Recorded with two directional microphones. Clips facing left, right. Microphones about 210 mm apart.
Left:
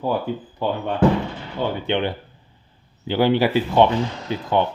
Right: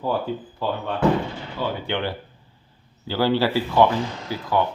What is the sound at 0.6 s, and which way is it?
Speech, 15° left (ahead or behind).